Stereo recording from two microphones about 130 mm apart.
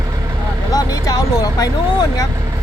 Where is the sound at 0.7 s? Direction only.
30° left (ahead or behind).